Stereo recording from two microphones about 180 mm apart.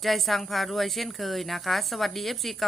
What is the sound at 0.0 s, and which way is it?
Speech, centre (ahead or behind).